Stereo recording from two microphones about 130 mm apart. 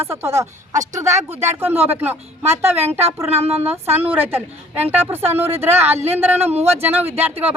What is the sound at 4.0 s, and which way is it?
Speech, 15° right (ahead or behind).